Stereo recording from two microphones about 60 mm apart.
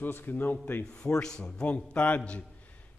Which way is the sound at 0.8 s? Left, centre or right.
Centre.